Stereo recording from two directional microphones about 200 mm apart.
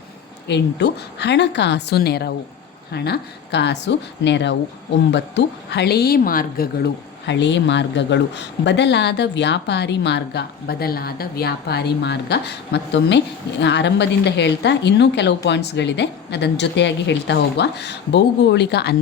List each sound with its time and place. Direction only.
0.4 s speech: 60° left (ahead or behind)